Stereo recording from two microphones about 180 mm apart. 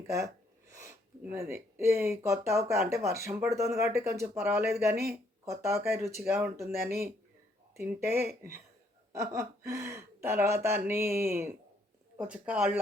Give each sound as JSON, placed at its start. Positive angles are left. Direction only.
{"t": 0.7, "sound": "speech", "side_deg": -15}
{"t": 9.3, "sound": "speech", "side_deg": -15}